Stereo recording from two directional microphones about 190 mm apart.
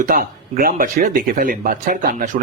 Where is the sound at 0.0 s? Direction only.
50° right (ahead or behind).